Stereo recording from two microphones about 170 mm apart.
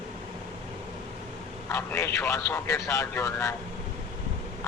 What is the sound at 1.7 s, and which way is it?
Speech, 15° left (ahead or behind).